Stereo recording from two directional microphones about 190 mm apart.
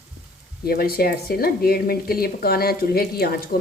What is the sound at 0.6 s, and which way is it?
Speech, 55° left (ahead or behind).